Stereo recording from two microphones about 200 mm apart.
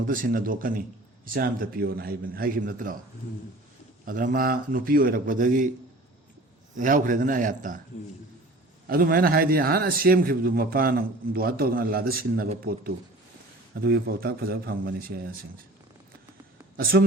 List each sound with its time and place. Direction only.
0.0 s a man's voice: 45° right (ahead or behind)
4.0 s a man's voice: 45° right (ahead or behind)
6.7 s a man's voice: 40° right (ahead or behind)
8.9 s a man's voice: 45° right (ahead or behind)
13.7 s a man's voice: 55° right (ahead or behind)
16.7 s speech: 50° right (ahead or behind)